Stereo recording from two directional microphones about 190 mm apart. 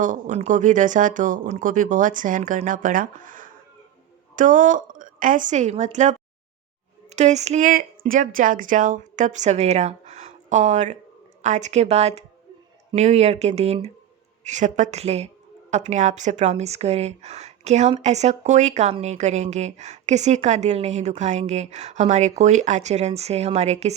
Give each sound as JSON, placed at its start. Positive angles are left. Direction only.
{"t": 0.0, "sound": "a woman's voice", "side_deg": -40}